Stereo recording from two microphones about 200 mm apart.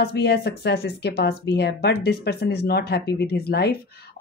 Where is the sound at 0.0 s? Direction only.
55° left (ahead or behind).